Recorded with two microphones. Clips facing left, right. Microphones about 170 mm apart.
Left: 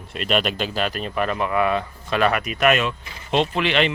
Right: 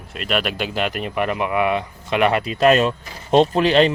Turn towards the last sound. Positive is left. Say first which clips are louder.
# right 6 dB
turn(degrees=-35)  # may be behind; listen again after turning